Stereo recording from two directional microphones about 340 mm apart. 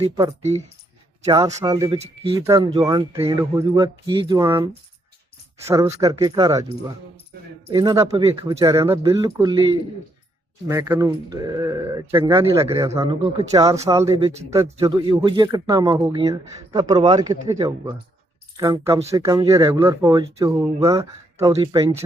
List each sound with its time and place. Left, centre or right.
0.0 s speech: centre
10.7 s speech: centre